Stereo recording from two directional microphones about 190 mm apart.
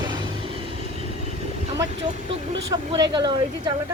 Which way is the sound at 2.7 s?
20° right (ahead or behind).